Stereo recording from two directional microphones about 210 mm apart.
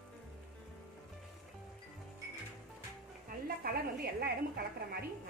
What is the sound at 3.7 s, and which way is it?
Speech, 50° right (ahead or behind).